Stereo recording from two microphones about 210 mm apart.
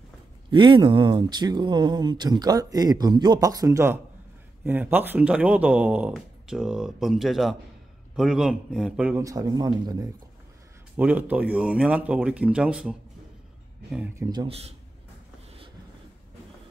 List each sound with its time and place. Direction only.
0.5 s a man's voice: 20° right (ahead or behind)
11.0 s speech: 5° right (ahead or behind)
13.9 s a man's voice: 5° right (ahead or behind)
14.3 s speech: 25° right (ahead or behind)